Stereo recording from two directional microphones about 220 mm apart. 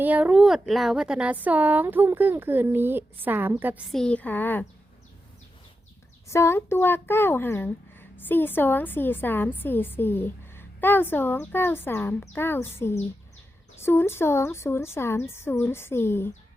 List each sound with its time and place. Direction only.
0.0 s speech: 5° right (ahead or behind)
3.9 s a child's voice: 5° left (ahead or behind)
6.2 s a child's voice: 10° left (ahead or behind)